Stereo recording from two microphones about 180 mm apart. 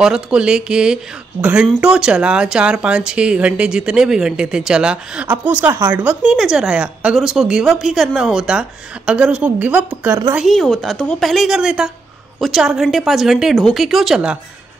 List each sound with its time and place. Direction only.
0.0 s speech: 5° right (ahead or behind)
10.4 s speech: centre (ahead or behind)